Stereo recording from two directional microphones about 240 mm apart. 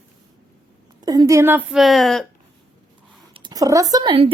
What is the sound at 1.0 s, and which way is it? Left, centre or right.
A woman's voice, centre.